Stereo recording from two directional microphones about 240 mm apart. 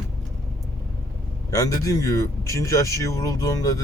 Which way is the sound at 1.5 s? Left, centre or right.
Centre.